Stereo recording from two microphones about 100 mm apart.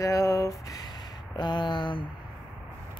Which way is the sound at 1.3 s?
45° left (ahead or behind).